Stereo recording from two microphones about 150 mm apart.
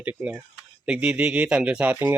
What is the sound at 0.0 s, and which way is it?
Speech, 10° right (ahead or behind).